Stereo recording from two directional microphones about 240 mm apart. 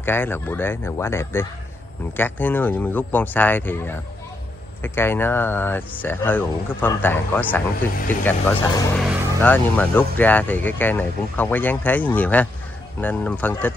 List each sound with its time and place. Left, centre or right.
0.0 s speech: centre
8.9 s speech: centre